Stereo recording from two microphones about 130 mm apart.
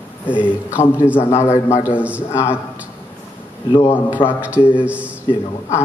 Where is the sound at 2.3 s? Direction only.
20° left (ahead or behind).